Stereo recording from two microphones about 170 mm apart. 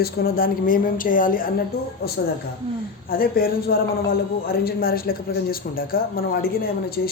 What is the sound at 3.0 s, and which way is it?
Speech, 60° left (ahead or behind).